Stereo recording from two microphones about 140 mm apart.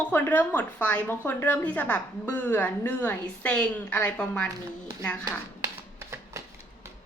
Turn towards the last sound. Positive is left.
turn(degrees=-20)  # may be behind; listen again after turning